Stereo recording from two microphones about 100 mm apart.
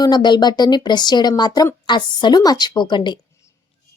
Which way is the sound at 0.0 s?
45° left (ahead or behind).